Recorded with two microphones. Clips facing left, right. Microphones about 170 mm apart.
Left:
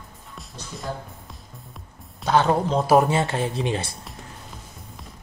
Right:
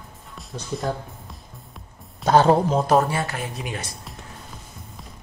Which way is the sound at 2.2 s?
35° right (ahead or behind).